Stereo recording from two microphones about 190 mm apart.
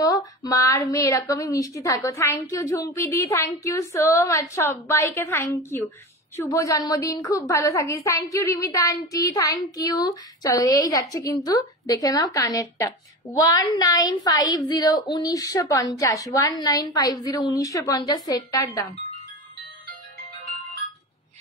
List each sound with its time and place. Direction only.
0.0 s a woman's voice: 20° left (ahead or behind)